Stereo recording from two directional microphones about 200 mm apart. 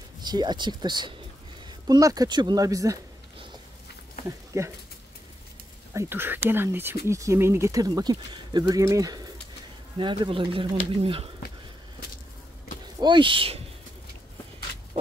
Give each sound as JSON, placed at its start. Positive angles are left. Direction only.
{"t": 0.2, "sound": "speech", "side_deg": -20}
{"t": 4.5, "sound": "speech", "side_deg": -15}
{"t": 5.9, "sound": "speech", "side_deg": -10}
{"t": 13.0, "sound": "speech", "side_deg": -25}